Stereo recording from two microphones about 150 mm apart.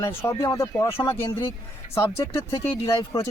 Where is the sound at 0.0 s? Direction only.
15° left (ahead or behind).